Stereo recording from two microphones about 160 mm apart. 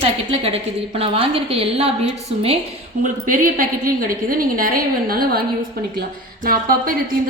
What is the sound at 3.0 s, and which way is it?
A woman's voice, 60° right (ahead or behind).